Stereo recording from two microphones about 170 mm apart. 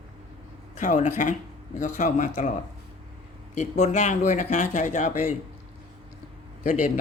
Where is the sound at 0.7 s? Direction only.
45° left (ahead or behind).